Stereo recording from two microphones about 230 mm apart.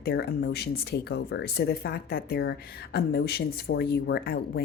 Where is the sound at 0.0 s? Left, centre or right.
Left.